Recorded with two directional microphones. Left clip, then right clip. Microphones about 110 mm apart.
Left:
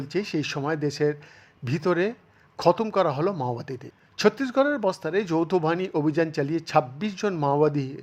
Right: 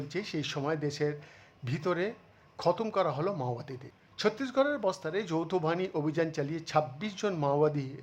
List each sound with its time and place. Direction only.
0.1 s speech: 30° left (ahead or behind)